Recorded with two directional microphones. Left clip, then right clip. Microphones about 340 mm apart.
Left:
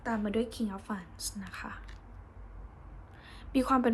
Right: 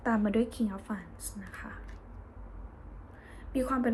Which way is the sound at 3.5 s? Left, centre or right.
Centre.